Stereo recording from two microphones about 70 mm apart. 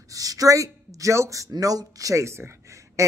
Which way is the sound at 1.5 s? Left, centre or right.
Right.